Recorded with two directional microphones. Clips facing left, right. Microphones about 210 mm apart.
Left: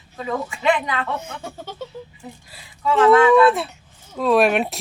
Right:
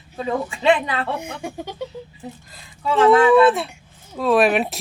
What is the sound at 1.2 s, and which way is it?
Speech, 15° right (ahead or behind).